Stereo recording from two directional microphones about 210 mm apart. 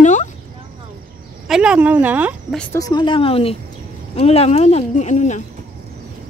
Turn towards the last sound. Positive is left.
turn(degrees=35)  # may be behind; listen again after turning